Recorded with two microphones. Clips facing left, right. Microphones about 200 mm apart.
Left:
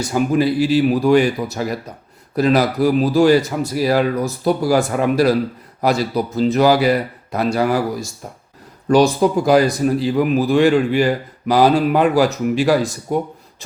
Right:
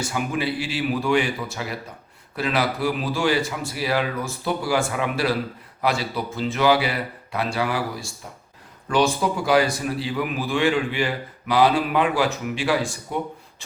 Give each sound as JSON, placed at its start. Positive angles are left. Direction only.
{"t": 0.0, "sound": "a man's voice", "side_deg": 40}